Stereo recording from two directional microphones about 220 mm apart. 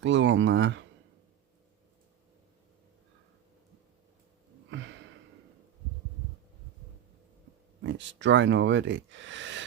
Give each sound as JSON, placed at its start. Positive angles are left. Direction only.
{"t": 0.0, "sound": "speech", "side_deg": -55}
{"t": 4.7, "sound": "sniff", "side_deg": -55}
{"t": 7.9, "sound": "speech", "side_deg": -55}